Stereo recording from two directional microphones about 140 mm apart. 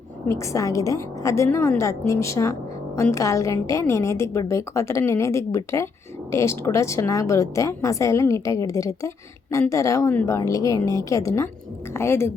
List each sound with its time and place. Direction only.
0.3 s a woman's voice: 25° left (ahead or behind)